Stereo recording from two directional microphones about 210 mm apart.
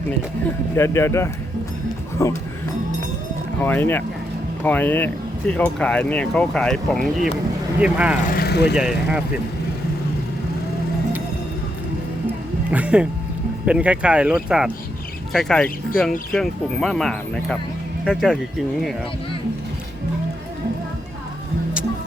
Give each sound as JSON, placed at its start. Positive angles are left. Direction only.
{"t": 0.8, "sound": "speech", "side_deg": 10}
{"t": 3.6, "sound": "speech", "side_deg": 10}
{"t": 8.3, "sound": "speech", "side_deg": 50}
{"t": 8.7, "sound": "speech", "side_deg": -5}
{"t": 12.7, "sound": "speech", "side_deg": -5}